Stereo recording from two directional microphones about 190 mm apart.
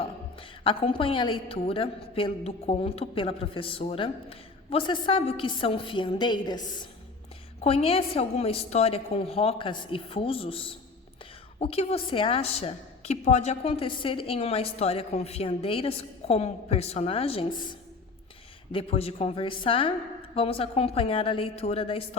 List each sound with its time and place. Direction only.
0.0 s a woman's voice: 25° left (ahead or behind)
7.6 s a woman's voice: 30° left (ahead or behind)